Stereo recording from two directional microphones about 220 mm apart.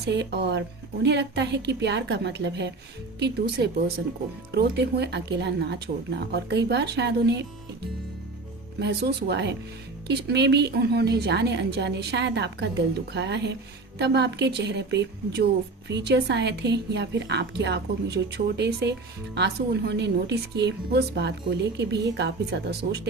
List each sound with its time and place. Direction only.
0.1 s a woman's voice: 50° right (ahead or behind)
8.8 s a woman's voice: 50° right (ahead or behind)